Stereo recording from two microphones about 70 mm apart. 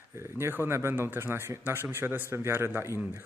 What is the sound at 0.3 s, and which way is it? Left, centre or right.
Speech, right.